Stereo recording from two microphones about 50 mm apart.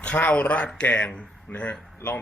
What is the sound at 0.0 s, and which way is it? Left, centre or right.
Speech, left.